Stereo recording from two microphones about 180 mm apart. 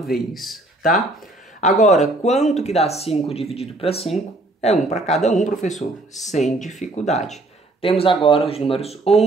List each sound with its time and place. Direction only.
0.0 s speech: centre (ahead or behind)
1.8 s speech: 40° left (ahead or behind)